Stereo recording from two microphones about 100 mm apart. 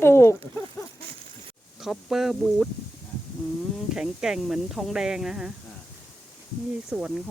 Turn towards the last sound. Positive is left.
turn(degrees=-15)  # may be behind; listen again after turning